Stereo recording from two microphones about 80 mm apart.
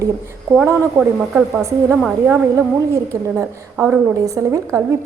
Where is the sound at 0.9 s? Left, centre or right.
Centre.